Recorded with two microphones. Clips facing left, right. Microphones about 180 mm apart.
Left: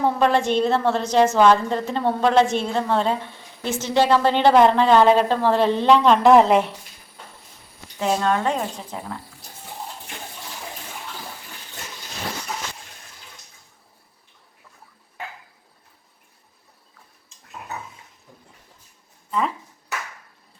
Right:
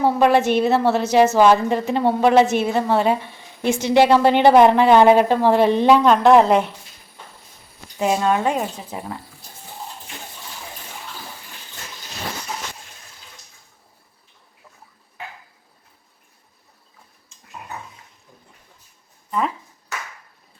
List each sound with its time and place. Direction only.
0.0 s a woman's voice: 10° right (ahead or behind)
7.9 s a woman's voice: 10° right (ahead or behind)